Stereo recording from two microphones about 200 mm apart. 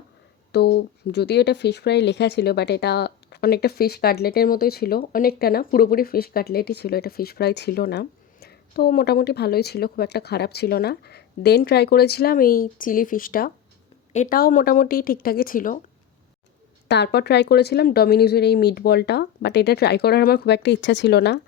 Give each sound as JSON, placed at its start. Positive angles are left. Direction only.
{"t": 0.5, "sound": "speech", "side_deg": 55}
{"t": 16.9, "sound": "speech", "side_deg": 55}